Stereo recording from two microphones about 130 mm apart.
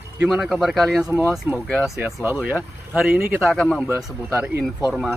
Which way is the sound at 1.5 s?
10° right (ahead or behind).